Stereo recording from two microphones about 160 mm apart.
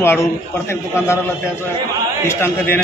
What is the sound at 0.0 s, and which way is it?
A man's voice, 15° left (ahead or behind).